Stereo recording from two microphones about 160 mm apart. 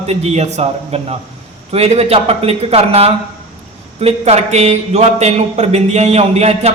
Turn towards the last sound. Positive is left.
turn(degrees=-40)  # may be behind; listen again after turning